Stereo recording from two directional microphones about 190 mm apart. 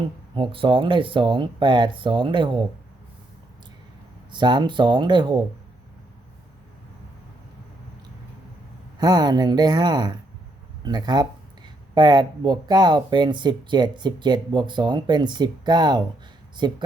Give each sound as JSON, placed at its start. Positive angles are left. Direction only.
{"t": 0.3, "sound": "speech", "side_deg": -25}
{"t": 4.3, "sound": "speech", "side_deg": -25}
{"t": 9.0, "sound": "speech", "side_deg": -20}